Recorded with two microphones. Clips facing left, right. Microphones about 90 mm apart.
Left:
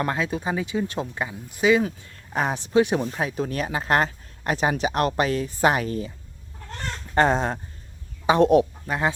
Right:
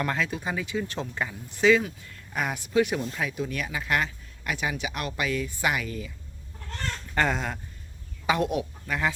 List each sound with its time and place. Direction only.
0.0 s speech: 25° left (ahead or behind)
2.0 s speech: 35° left (ahead or behind)
6.7 s chicken: 30° left (ahead or behind)
8.4 s speech: 40° left (ahead or behind)
8.9 s speech: 25° left (ahead or behind)